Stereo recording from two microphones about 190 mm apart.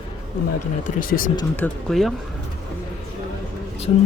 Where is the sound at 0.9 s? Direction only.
45° left (ahead or behind).